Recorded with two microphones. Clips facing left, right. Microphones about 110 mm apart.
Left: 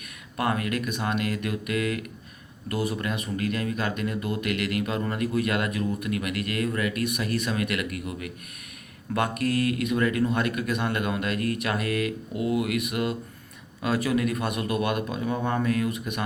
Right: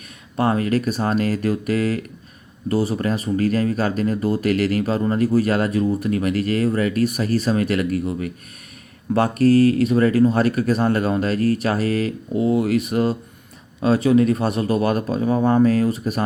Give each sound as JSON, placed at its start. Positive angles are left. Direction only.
{"t": 0.3, "sound": "speech", "side_deg": -30}